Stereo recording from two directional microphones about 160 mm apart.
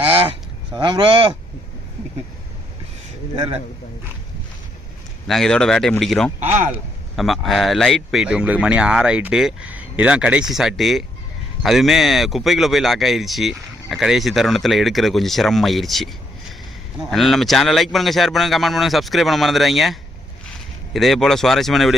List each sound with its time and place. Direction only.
0.0 s a sound: 35° right (ahead or behind)
0.8 s speech: 30° right (ahead or behind)
3.3 s speech: 35° right (ahead or behind)
5.3 s speech: 5° left (ahead or behind)